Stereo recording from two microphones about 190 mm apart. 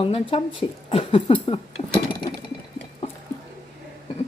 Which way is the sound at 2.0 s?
20° left (ahead or behind).